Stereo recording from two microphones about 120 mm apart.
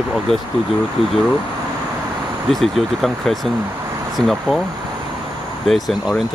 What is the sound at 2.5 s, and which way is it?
Speech, centre (ahead or behind).